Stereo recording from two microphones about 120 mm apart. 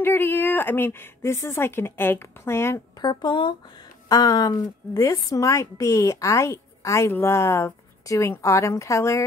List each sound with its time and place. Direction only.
0.0 s a woman's voice: 15° left (ahead or behind)
3.0 s a woman's voice: 40° left (ahead or behind)